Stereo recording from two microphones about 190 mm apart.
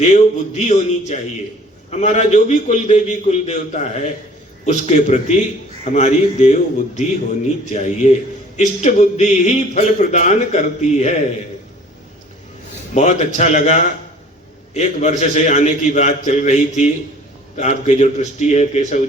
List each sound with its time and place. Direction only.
0.1 s speech: 35° left (ahead or behind)
12.9 s speech: 35° left (ahead or behind)